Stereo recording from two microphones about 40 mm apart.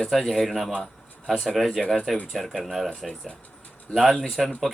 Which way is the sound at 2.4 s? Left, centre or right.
Centre.